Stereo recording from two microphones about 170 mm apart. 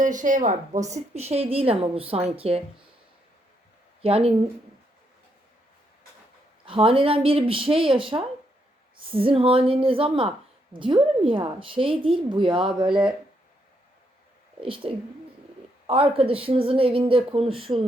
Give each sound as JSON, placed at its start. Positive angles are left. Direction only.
{"t": 0.0, "sound": "speech", "side_deg": -50}
{"t": 4.0, "sound": "speech", "side_deg": -35}
{"t": 6.7, "sound": "a woman's voice", "side_deg": -30}
{"t": 14.6, "sound": "speech", "side_deg": -30}